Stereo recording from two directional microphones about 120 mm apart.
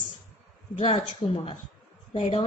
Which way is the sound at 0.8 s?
55° left (ahead or behind).